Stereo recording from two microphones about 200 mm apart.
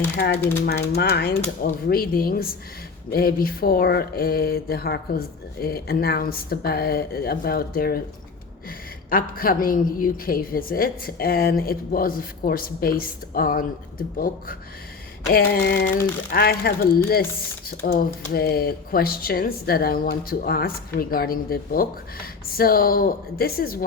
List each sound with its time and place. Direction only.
0.6 s speech: 55° left (ahead or behind)
9.0 s speech: 45° left (ahead or behind)
15.3 s speech: 50° left (ahead or behind)